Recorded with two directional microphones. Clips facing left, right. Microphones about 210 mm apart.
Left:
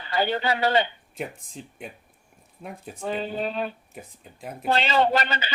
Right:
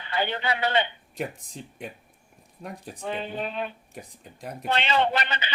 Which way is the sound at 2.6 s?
5° left (ahead or behind).